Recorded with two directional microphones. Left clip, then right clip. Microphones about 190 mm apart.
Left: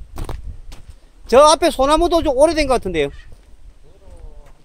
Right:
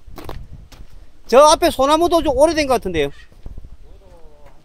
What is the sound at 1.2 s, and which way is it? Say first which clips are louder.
Speech: even; centre (ahead or behind).